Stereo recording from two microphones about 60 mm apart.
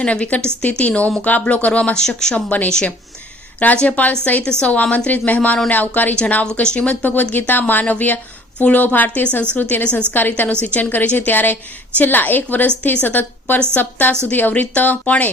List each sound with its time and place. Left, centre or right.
0.0 s speech: left
2.5 s a woman's voice: left